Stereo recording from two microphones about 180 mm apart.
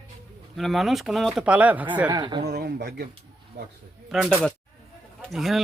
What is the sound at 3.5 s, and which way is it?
Speech, 50° right (ahead or behind).